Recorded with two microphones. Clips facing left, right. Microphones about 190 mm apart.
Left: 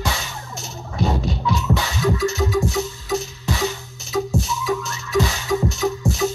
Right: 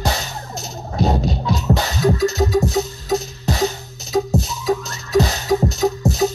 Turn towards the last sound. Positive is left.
turn(degrees=-40)  # may be behind; listen again after turning